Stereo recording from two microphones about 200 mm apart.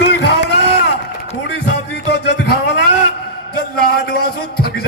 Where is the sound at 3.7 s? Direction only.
50° left (ahead or behind).